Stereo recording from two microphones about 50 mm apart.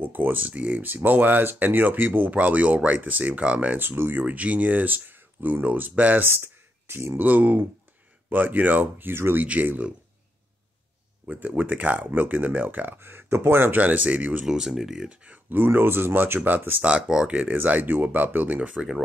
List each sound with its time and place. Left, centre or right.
0.0 s speech: right
3.7 s speech: right
4.3 s speech: right
6.2 s a sound: right
7.2 s speech: right
9.1 s speech: right
9.4 s speech: right
11.2 s speech: right
13.7 s speech: right
14.4 s speech: centre
15.0 s speech: right
15.5 s speech: right
17.1 s speech: centre
17.5 s speech: right